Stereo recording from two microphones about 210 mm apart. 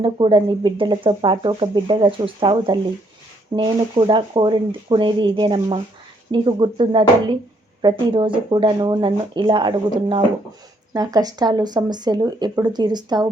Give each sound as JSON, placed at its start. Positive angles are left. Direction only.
{"t": 0.0, "sound": "speech", "side_deg": -25}